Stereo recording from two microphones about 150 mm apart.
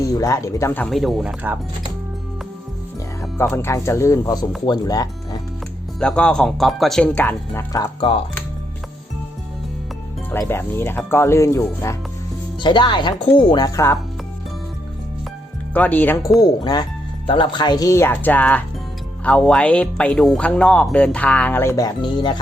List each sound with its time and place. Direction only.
0.0 s speech: 20° left (ahead or behind)
0.9 s speech: centre (ahead or behind)
3.3 s speech: 15° left (ahead or behind)
6.0 s speech: 5° left (ahead or behind)
10.3 s speech: 15° left (ahead or behind)
12.6 s speech: 30° left (ahead or behind)
13.7 s speech: 20° left (ahead or behind)
15.7 s speech: 10° left (ahead or behind)
16.4 s speech: 25° left (ahead or behind)